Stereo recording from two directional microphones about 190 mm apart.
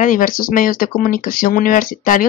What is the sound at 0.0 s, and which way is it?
Speech, 45° left (ahead or behind).